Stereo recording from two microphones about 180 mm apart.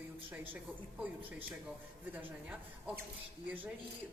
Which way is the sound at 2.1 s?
10° right (ahead or behind).